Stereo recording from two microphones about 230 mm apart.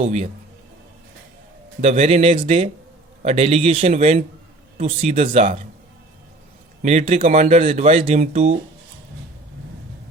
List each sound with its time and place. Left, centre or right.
0.0 s speech: right
1.8 s speech: right
6.8 s speech: right